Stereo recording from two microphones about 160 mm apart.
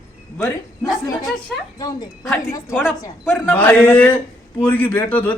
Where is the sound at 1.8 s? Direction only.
20° left (ahead or behind).